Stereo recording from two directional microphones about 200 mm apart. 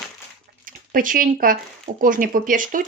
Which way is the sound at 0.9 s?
45° right (ahead or behind).